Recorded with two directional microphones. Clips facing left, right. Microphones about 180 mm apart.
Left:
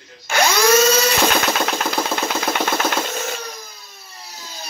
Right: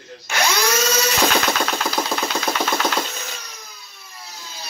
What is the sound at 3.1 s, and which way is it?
Wood, 55° left (ahead or behind).